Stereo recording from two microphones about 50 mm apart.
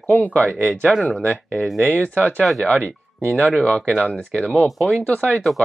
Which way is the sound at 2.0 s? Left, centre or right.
Right.